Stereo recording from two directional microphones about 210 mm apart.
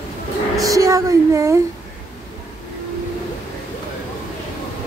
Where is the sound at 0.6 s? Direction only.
15° right (ahead or behind).